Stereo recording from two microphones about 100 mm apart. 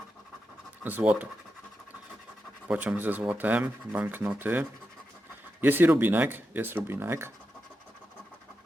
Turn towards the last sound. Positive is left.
turn(degrees=-25)  # may be behind; listen again after turning